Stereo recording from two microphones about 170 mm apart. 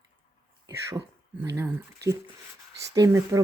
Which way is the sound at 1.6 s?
15° right (ahead or behind).